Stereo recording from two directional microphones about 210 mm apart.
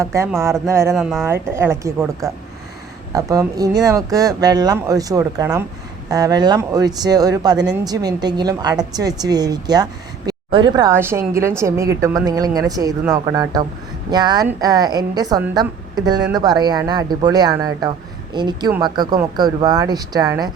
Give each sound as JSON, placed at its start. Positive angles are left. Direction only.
{"t": 0.0, "sound": "a woman's voice", "side_deg": -15}
{"t": 0.9, "sound": "speech", "side_deg": 0}
{"t": 1.2, "sound": "a woman's voice", "side_deg": -10}